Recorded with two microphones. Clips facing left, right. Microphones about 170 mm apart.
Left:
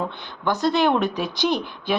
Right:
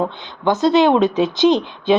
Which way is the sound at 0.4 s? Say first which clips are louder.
Right 6 dB; 20° right (ahead or behind).